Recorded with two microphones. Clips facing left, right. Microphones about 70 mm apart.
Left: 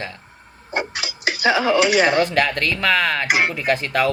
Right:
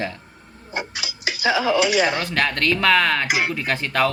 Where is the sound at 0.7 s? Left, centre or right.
Left.